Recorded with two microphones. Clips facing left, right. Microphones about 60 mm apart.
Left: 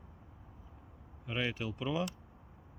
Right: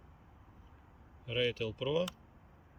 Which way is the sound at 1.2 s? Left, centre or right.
Left.